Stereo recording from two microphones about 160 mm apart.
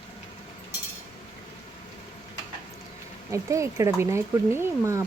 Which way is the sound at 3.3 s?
20° right (ahead or behind).